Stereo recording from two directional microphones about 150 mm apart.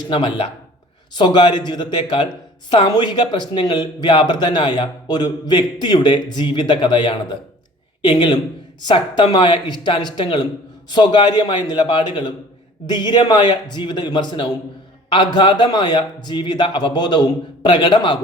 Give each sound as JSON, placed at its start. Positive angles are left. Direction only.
{"t": 0.1, "sound": "speech", "side_deg": 35}